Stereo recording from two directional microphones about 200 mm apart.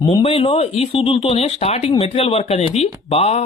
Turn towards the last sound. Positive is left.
turn(degrees=30)  # may be behind; listen again after turning